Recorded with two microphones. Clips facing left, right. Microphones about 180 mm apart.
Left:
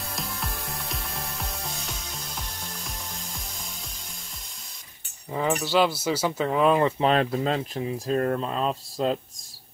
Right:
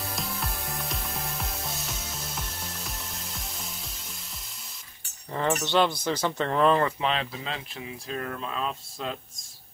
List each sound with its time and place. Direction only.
0.1 s music: centre (ahead or behind)
5.3 s speech: 5° left (ahead or behind)
7.0 s speech: 45° left (ahead or behind)